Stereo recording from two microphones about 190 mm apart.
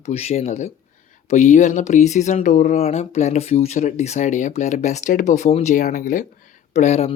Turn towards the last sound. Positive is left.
turn(degrees=35)  # may be behind; listen again after turning